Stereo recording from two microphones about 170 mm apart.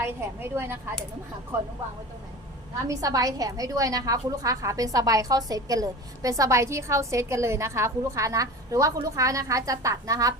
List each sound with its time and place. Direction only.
0.0 s a woman's voice: 15° right (ahead or behind)
2.8 s a woman's voice: 20° right (ahead or behind)